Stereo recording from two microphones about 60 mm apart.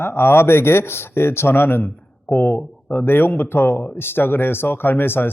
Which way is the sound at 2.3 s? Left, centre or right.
Left.